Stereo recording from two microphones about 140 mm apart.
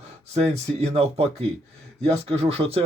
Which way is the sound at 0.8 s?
45° right (ahead or behind).